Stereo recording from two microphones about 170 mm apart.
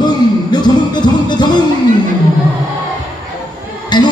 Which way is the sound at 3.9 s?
25° left (ahead or behind).